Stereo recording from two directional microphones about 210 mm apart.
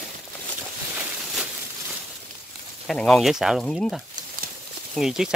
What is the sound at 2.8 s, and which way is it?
Speech, centre (ahead or behind).